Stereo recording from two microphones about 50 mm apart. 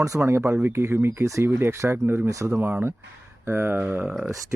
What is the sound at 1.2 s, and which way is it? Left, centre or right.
Speech, right.